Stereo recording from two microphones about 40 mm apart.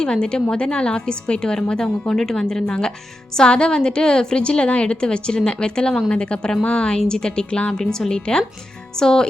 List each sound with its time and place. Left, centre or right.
0.0 s a woman's voice: centre